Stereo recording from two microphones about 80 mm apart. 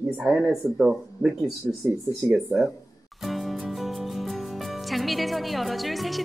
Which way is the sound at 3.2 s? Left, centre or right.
Centre.